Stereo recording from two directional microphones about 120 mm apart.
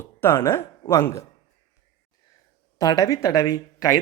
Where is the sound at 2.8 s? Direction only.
30° left (ahead or behind).